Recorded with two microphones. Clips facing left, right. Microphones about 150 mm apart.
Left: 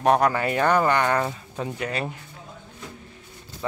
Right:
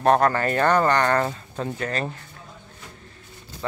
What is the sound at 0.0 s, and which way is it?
Speech, 10° left (ahead or behind).